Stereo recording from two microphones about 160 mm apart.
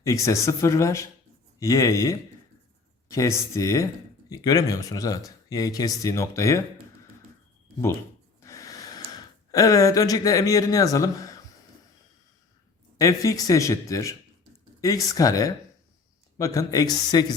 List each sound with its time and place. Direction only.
0.0 s speech: 20° left (ahead or behind)
8.4 s gasp: 20° left (ahead or behind)
13.0 s speech: 20° left (ahead or behind)